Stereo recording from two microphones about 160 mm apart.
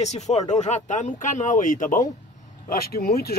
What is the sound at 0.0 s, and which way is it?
Speech, 45° left (ahead or behind).